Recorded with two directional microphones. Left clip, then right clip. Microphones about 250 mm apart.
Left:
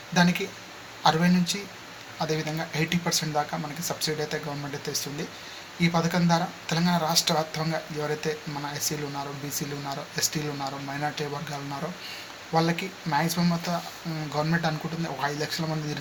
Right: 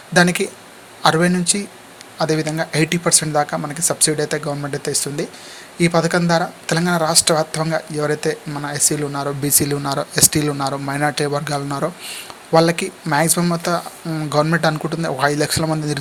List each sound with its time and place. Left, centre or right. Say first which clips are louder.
0.1 s speech: right 10 dB; right